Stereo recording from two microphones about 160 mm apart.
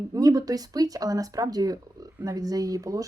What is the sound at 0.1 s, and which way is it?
Speech, 20° right (ahead or behind).